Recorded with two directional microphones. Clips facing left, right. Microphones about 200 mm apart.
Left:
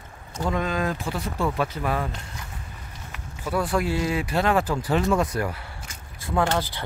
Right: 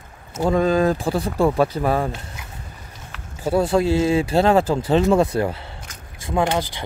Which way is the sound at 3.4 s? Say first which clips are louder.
Right 7 dB; 25° right (ahead or behind).